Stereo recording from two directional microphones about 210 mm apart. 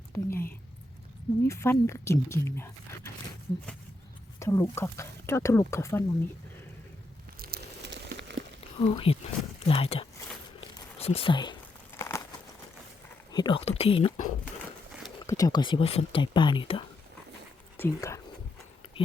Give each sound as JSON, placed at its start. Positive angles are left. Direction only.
{"t": 0.1, "sound": "a sound", "side_deg": 10}
{"t": 1.5, "sound": "speech", "side_deg": 10}
{"t": 4.4, "sound": "speech", "side_deg": 15}
{"t": 7.3, "sound": "crumpling", "side_deg": -45}
{"t": 8.8, "sound": "speech", "side_deg": 25}
{"t": 10.6, "sound": "a sound", "side_deg": 30}
{"t": 11.9, "sound": "crumpling", "side_deg": 15}
{"t": 13.3, "sound": "speech", "side_deg": 20}
{"t": 15.3, "sound": "speech", "side_deg": 15}
{"t": 17.7, "sound": "speech", "side_deg": 10}